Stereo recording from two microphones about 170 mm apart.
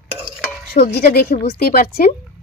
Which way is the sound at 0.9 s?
65° left (ahead or behind).